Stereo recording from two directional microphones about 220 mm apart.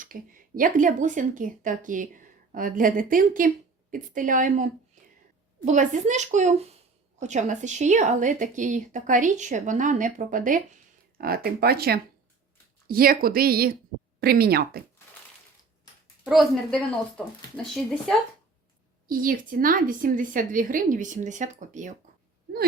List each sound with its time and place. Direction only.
0.0 s a woman's voice: 40° right (ahead or behind)
16.3 s a woman's voice: centre (ahead or behind)
19.0 s a woman's voice: 40° right (ahead or behind)